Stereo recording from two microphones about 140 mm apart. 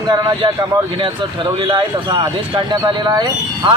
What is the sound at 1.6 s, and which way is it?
A man's voice, 35° right (ahead or behind).